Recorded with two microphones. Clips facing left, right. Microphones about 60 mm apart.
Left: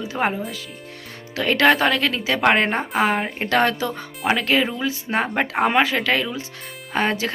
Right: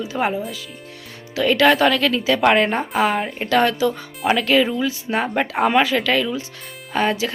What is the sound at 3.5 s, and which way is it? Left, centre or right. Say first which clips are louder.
Speech: right 3 dB; left.